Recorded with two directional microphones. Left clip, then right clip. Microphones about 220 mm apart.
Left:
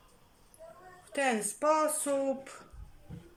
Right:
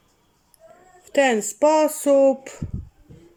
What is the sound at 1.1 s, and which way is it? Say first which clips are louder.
Speech: right 12 dB; 40° right (ahead or behind).